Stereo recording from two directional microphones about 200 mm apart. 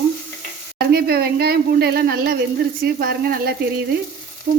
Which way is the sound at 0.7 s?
50° right (ahead or behind).